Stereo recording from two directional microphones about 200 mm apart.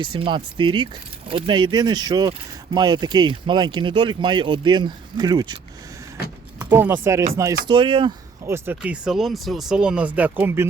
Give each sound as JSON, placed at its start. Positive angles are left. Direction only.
{"t": 0.0, "sound": "speech", "side_deg": -25}
{"t": 6.6, "sound": "speech", "side_deg": -10}
{"t": 8.4, "sound": "speech", "side_deg": -10}